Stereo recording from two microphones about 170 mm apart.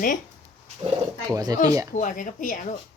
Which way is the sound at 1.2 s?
20° right (ahead or behind).